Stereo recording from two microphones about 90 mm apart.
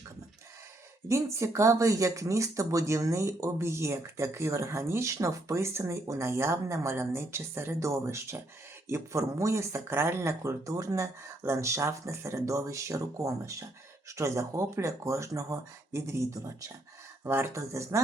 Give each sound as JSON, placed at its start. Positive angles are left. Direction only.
{"t": 1.0, "sound": "speech", "side_deg": -30}